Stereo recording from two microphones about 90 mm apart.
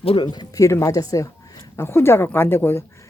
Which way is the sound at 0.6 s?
35° left (ahead or behind).